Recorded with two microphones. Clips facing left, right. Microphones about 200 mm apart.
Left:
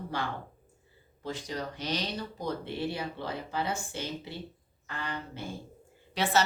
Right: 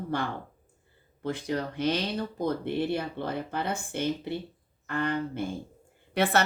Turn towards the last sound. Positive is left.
turn(degrees=-55)  # may be behind; listen again after turning